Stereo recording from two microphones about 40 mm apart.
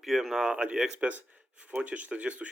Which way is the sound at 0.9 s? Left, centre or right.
Right.